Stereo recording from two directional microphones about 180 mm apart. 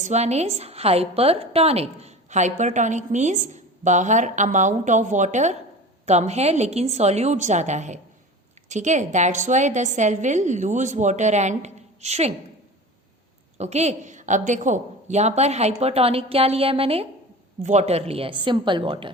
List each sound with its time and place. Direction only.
0.0 s a woman's voice: 40° right (ahead or behind)
13.6 s a woman's voice: 40° right (ahead or behind)